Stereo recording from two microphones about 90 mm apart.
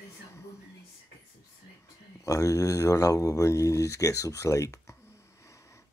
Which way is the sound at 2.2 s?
35° left (ahead or behind).